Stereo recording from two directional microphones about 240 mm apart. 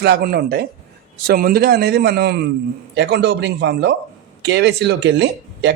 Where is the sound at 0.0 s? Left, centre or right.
Right.